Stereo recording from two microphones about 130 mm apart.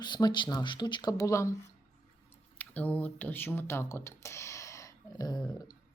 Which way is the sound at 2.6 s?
10° left (ahead or behind).